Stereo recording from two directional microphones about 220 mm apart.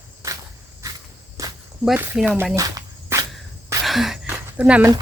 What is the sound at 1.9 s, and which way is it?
Speech, 10° right (ahead or behind).